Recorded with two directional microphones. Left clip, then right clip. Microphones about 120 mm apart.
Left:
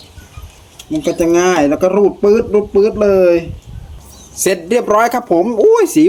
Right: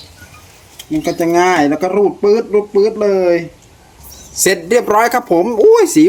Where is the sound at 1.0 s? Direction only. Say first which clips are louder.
Even; 20° left (ahead or behind).